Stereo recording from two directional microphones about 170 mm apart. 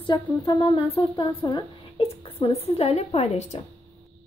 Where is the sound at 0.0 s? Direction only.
25° left (ahead or behind).